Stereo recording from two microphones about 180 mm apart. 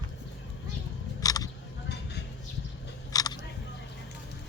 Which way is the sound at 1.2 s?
20° left (ahead or behind).